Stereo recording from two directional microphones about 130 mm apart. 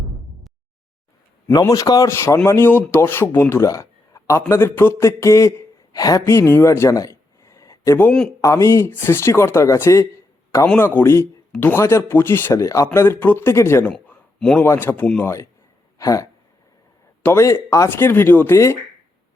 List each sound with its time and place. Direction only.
1.5 s speech: 25° left (ahead or behind); by 14.6 s 5° left (ahead or behind)
14.6 s speech: 20° left (ahead or behind)
17.2 s speech: 20° left (ahead or behind)